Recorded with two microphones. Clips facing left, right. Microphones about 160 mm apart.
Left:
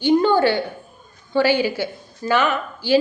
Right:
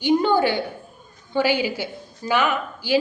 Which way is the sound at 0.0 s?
15° right (ahead or behind).